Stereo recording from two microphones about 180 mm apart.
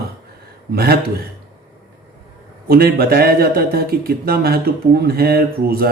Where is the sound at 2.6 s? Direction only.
55° right (ahead or behind).